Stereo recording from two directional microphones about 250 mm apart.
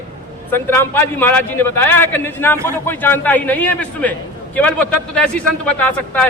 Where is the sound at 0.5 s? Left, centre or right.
Centre.